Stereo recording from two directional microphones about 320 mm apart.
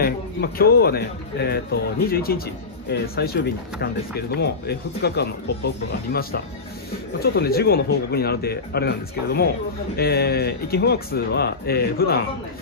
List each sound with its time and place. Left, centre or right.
0.0 s a man's voice: left